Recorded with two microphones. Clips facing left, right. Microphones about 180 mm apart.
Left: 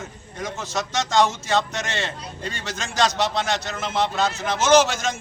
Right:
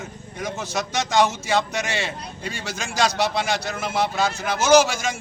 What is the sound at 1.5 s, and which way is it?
A man's voice, 10° right (ahead or behind).